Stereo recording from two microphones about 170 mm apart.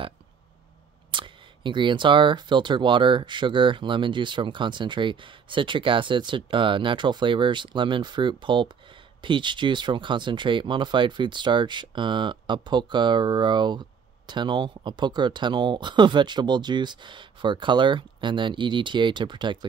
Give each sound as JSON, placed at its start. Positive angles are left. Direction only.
{"t": 1.1, "sound": "speech", "side_deg": -30}